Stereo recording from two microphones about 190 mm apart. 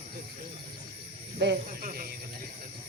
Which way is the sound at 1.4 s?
55° right (ahead or behind).